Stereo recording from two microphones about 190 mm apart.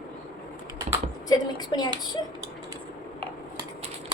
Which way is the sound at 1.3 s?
20° left (ahead or behind).